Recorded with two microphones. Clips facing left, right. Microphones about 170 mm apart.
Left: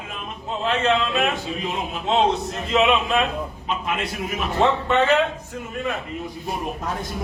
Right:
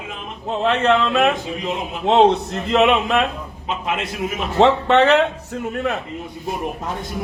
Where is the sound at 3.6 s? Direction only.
20° right (ahead or behind).